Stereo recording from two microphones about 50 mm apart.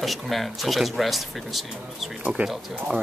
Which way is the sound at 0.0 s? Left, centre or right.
Centre.